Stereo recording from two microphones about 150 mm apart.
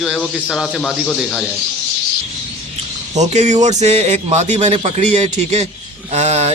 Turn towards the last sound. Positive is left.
turn(degrees=-50)  # may be behind; listen again after turning